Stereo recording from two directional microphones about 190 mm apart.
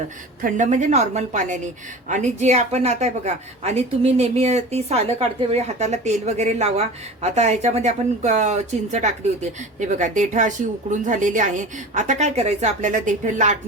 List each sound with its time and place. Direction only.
0.4 s a woman's voice: 45° right (ahead or behind)